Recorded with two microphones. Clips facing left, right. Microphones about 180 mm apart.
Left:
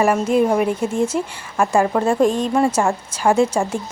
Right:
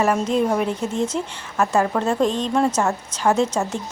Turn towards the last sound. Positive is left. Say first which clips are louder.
# left 3 dB
turn(degrees=10)  # may be behind; listen again after turning